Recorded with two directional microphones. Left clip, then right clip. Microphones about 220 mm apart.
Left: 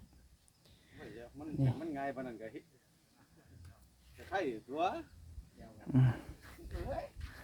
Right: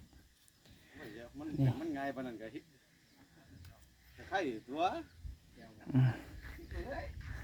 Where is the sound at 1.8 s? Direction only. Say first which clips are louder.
Even; 50° right (ahead or behind).